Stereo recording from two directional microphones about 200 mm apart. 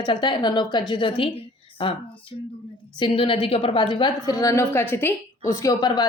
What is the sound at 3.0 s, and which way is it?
Speech, 25° left (ahead or behind).